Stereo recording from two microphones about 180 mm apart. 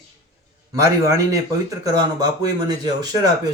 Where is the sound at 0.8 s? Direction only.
15° right (ahead or behind).